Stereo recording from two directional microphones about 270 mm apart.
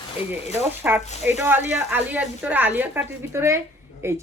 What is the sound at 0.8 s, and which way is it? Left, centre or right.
A woman's voice, centre.